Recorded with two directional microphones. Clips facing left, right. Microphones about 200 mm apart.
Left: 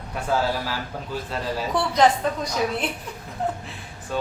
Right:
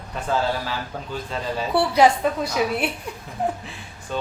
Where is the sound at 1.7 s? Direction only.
10° right (ahead or behind).